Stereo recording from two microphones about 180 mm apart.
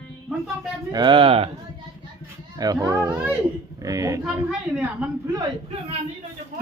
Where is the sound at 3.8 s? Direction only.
20° right (ahead or behind).